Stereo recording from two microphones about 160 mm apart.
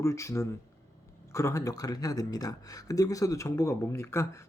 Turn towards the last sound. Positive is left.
turn(degrees=15)  # may be behind; listen again after turning